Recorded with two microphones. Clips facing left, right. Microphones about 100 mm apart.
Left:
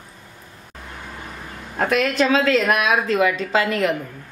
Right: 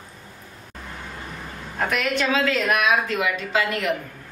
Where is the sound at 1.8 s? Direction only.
35° left (ahead or behind).